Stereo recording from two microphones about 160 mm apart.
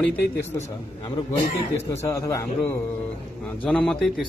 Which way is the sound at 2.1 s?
20° left (ahead or behind).